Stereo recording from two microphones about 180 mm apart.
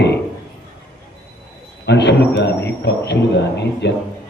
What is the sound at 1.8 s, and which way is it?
Speech, 70° left (ahead or behind).